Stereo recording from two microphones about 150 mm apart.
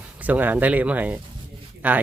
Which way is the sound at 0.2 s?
10° right (ahead or behind).